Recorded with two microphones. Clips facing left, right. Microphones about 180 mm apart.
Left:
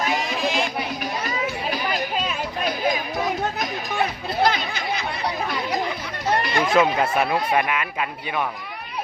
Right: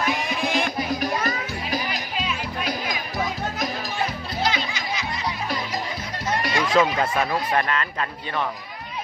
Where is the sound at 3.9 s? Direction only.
60° left (ahead or behind).